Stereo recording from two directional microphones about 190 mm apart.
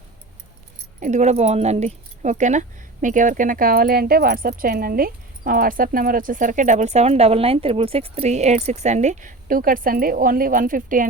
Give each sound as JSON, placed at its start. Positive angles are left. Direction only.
{"t": 0.9, "sound": "speech", "side_deg": -40}